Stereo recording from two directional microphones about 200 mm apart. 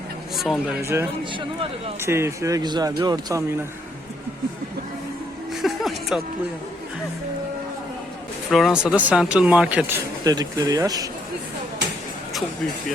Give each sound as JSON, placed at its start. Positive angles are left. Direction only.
{"t": 0.3, "sound": "speech", "side_deg": 0}
{"t": 0.8, "sound": "speech", "side_deg": -15}
{"t": 5.6, "sound": "a sound", "side_deg": 0}
{"t": 8.4, "sound": "speech", "side_deg": 0}
{"t": 10.2, "sound": "speech", "side_deg": -20}